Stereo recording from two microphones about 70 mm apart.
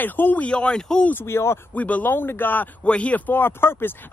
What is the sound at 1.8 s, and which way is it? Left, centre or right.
A man's voice, left.